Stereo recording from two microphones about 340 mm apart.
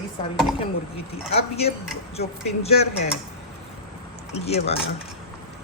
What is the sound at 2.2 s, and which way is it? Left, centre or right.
Speech, centre.